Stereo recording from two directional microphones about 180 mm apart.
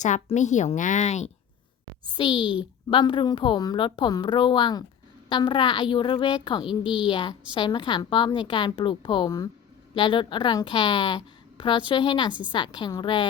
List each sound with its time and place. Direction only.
0.0 s a woman's voice: 40° left (ahead or behind)
2.0 s a woman's voice: 25° left (ahead or behind)
6.7 s a woman's voice: 5° right (ahead or behind)
7.0 s a woman's voice: 30° left (ahead or behind)